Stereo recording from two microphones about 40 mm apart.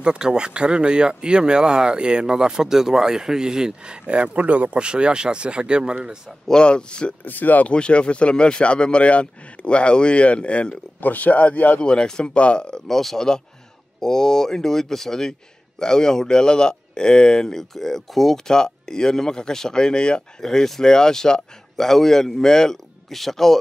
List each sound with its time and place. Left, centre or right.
0.0 s speech: right
4.1 s speech: right
6.6 s speech: left
7.2 s speech: left
7.7 s speech: left
11.0 s speech: left
11.8 s speech: left
12.8 s speech: centre
20.4 s speech: centre
23.0 s speech: centre